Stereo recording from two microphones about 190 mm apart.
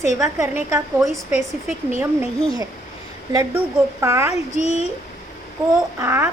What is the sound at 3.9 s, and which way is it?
Speech, 15° right (ahead or behind).